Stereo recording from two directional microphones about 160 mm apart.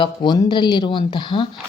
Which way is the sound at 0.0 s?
30° left (ahead or behind).